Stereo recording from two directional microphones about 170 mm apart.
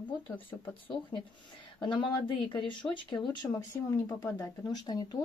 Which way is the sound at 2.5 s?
30° left (ahead or behind).